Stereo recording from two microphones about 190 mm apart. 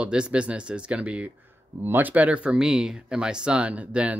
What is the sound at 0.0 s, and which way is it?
Speech, 5° right (ahead or behind).